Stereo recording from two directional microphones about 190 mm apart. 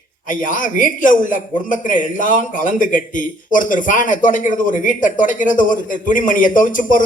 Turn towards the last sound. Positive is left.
turn(degrees=45)  # may be behind; listen again after turning